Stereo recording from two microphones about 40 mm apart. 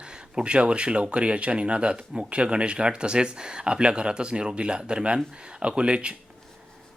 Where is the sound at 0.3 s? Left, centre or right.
Right.